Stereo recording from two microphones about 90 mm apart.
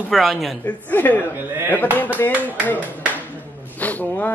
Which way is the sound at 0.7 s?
20° left (ahead or behind).